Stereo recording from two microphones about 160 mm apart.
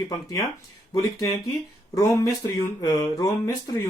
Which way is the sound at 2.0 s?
20° left (ahead or behind).